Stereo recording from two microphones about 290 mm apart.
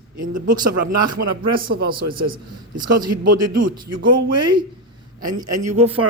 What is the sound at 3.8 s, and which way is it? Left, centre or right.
Speech, right.